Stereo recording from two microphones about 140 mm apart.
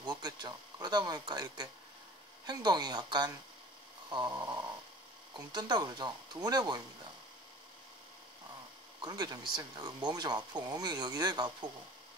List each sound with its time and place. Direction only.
0.0 s speech: 30° right (ahead or behind)
9.0 s speech: 25° right (ahead or behind)